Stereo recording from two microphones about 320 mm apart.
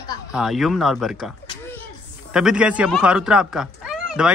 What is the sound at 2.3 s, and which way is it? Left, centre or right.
Speech, centre.